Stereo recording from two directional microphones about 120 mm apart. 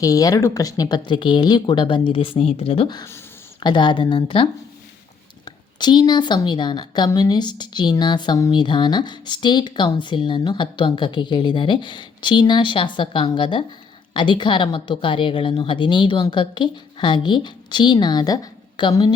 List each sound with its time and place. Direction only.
0.0 s speech: 30° left (ahead or behind); by 2.9 s 50° left (ahead or behind)
3.6 s speech: 35° left (ahead or behind)
5.5 s speech: 40° left (ahead or behind)